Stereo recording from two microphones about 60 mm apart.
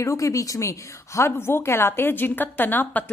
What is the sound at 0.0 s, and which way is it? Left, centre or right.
A woman's voice, left.